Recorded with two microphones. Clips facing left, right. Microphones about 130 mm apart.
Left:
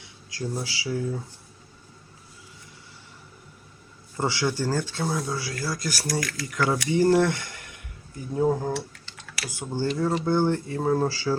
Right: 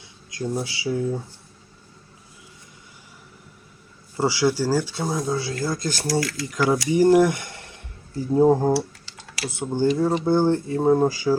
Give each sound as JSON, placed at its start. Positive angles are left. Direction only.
{"t": 0.3, "sound": "speech", "side_deg": -25}
{"t": 4.2, "sound": "speech", "side_deg": -10}
{"t": 9.4, "sound": "speech", "side_deg": -25}